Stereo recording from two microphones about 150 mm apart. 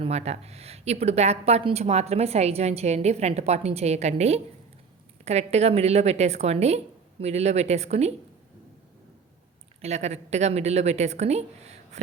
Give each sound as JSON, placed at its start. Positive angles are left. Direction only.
{"t": 0.0, "sound": "a woman's voice", "side_deg": -45}
{"t": 9.8, "sound": "a woman's voice", "side_deg": -50}